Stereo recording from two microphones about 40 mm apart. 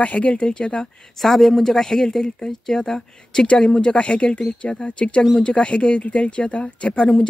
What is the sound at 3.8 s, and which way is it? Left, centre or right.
Speech, left.